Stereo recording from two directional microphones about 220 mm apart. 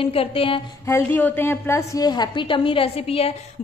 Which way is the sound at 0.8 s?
10° left (ahead or behind).